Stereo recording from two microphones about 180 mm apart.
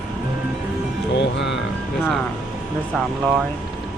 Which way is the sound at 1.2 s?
75° left (ahead or behind).